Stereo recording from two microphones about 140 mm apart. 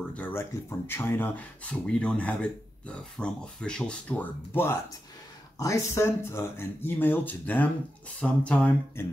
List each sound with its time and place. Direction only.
0.1 s speech: 15° left (ahead or behind)